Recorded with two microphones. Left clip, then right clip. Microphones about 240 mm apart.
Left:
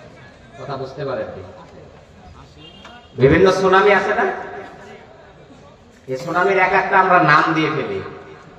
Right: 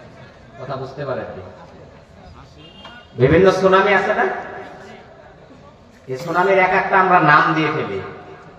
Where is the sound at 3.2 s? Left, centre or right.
Left.